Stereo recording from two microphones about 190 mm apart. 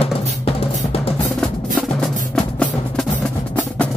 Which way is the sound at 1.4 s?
5° left (ahead or behind).